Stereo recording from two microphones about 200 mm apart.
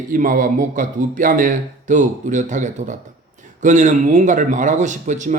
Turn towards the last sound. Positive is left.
turn(degrees=-40)  # may be behind; listen again after turning